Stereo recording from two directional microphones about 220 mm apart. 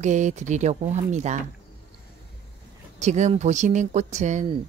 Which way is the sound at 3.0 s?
30° right (ahead or behind).